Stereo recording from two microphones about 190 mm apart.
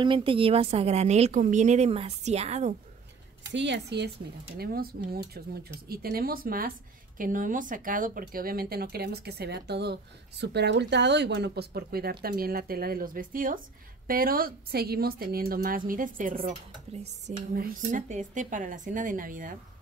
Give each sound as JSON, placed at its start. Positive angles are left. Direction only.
{"t": 0.0, "sound": "a woman's voice", "side_deg": -25}
{"t": 3.5, "sound": "speech", "side_deg": -65}
{"t": 4.6, "sound": "speech", "side_deg": -50}